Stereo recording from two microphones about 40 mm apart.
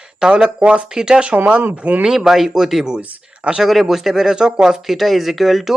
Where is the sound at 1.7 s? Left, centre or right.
Right.